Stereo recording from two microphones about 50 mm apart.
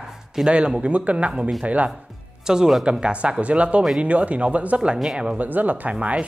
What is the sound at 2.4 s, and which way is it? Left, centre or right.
Speech, centre.